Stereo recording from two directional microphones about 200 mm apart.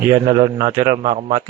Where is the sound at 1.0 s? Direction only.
30° right (ahead or behind).